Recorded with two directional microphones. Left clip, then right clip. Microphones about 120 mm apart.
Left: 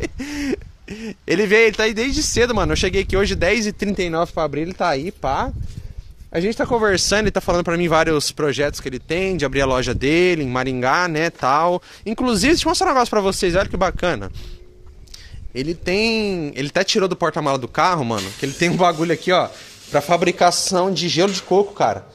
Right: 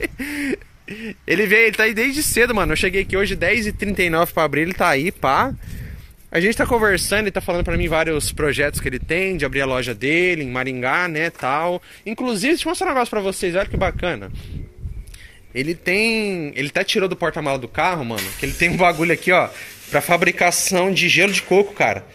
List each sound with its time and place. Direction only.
0.0 s a sound: 15° left (ahead or behind)
1.7 s speech: 15° left (ahead or behind)
2.7 s speech: 35° left (ahead or behind)
4.3 s speech: 15° right (ahead or behind)
6.3 s speech: 20° right (ahead or behind)
7.0 s speech: 40° left (ahead or behind); by 8.4 s 60° left (ahead or behind)
8.4 s speech: 25° left (ahead or behind)
9.3 s speech: 45° left (ahead or behind); by 12.6 s 90° left
12.6 s speech: 50° left (ahead or behind)
13.1 s speech: 90° left; by 14.2 s 50° left (ahead or behind)
15.5 s speech: 20° left (ahead or behind); by 18.2 s 60° left (ahead or behind)
18.4 s speech: 40° left (ahead or behind)
18.9 s speech: 10° left (ahead or behind)